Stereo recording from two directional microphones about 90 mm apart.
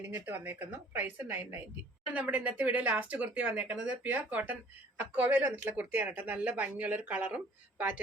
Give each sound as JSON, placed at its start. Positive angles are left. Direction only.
{"t": 0.0, "sound": "a woman's voice", "side_deg": -20}